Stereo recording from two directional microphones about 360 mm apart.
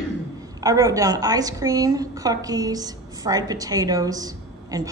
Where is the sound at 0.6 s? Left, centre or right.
Centre.